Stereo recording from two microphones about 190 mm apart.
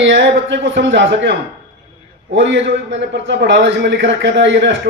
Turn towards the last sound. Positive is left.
turn(degrees=-70)  # may be behind; listen again after turning